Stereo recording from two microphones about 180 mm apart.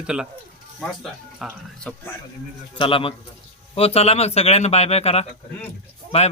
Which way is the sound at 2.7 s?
30° left (ahead or behind).